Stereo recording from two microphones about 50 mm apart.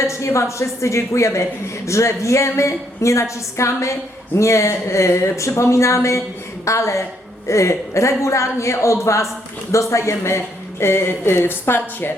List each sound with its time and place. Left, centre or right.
0.1 s a woman's voice: left
6.7 s a woman's voice: left
9.9 s a woman's voice: left